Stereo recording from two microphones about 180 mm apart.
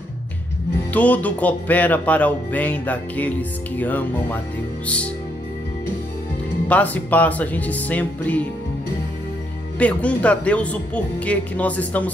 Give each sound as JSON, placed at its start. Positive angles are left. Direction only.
{"t": 0.9, "sound": "speech", "side_deg": 10}
{"t": 6.7, "sound": "speech", "side_deg": 10}
{"t": 9.8, "sound": "speech", "side_deg": 5}